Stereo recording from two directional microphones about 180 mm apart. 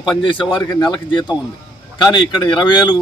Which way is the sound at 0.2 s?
25° left (ahead or behind).